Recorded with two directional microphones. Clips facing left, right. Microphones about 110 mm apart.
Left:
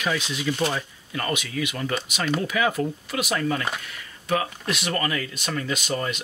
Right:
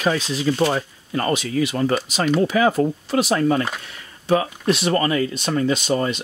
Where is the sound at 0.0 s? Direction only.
35° right (ahead or behind).